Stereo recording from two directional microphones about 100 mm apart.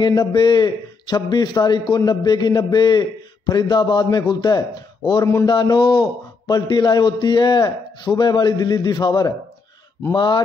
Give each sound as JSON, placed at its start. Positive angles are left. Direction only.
{"t": 0.0, "sound": "a man's voice", "side_deg": 45}
{"t": 5.2, "sound": "speech", "side_deg": 30}
{"t": 5.5, "sound": "a man's voice", "side_deg": 50}